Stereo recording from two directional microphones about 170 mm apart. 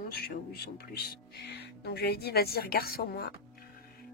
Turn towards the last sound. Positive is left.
turn(degrees=65)  # may be behind; listen again after turning